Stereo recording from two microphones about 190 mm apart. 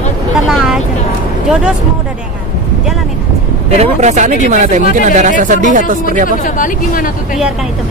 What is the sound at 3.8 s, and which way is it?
Speech, 35° right (ahead or behind).